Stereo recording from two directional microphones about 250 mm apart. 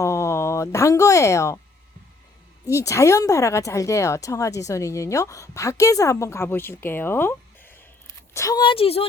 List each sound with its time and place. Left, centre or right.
0.0 s speech: centre
2.6 s speech: centre